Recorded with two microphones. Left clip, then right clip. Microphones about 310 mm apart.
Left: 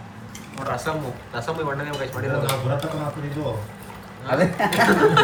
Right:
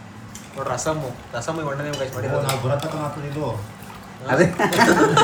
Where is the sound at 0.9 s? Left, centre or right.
Centre.